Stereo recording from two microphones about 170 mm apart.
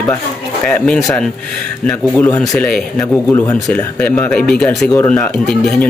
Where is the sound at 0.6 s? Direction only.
5° left (ahead or behind).